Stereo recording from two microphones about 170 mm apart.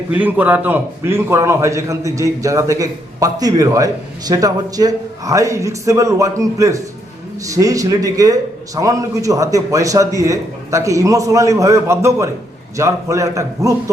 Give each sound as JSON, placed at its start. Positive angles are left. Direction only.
{"t": 0.1, "sound": "a man's voice", "side_deg": -10}